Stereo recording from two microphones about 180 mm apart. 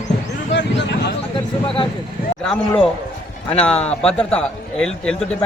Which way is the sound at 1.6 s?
30° left (ahead or behind).